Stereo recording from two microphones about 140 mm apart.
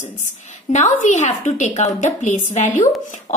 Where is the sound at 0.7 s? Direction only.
55° left (ahead or behind).